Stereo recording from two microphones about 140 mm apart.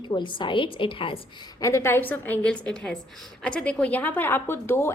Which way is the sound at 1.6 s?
20° left (ahead or behind).